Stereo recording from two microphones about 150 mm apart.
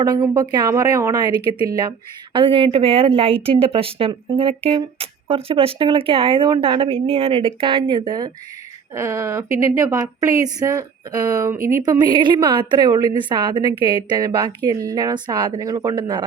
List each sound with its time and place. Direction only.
0.0 s a woman's voice: 25° right (ahead or behind)